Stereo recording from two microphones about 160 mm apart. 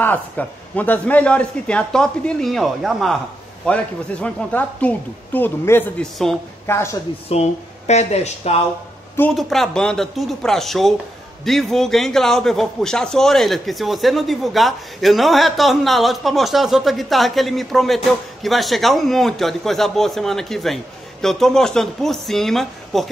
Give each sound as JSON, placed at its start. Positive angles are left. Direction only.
{"t": 0.0, "sound": "a man's voice", "side_deg": 10}
{"t": 7.2, "sound": "speech", "side_deg": 40}
{"t": 9.3, "sound": "a man's voice", "side_deg": 0}